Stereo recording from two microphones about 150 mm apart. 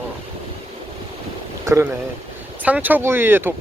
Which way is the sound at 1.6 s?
20° right (ahead or behind).